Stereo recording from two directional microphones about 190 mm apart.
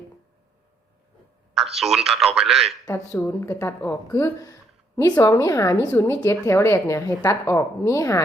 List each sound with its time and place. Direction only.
1.7 s speech: centre (ahead or behind)
2.8 s a woman's voice: 10° left (ahead or behind)